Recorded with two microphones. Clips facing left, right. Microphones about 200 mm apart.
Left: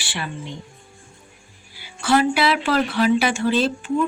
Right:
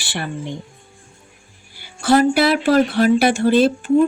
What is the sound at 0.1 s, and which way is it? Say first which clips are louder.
Speech: right 5 dB; 60° right (ahead or behind).